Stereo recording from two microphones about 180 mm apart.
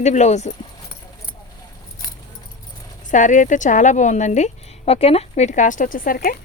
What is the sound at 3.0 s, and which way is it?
Speech, 45° left (ahead or behind).